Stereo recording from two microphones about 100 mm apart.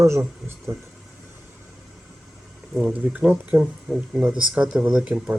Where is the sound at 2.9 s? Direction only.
15° right (ahead or behind).